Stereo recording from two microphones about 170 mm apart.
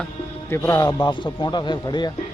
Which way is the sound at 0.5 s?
15° left (ahead or behind).